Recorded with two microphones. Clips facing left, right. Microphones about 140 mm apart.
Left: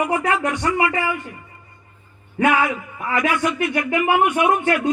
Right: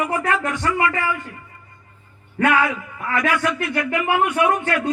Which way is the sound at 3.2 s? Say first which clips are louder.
Left 1 dB; 20° left (ahead or behind).